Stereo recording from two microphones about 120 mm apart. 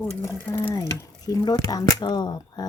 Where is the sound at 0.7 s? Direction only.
25° left (ahead or behind).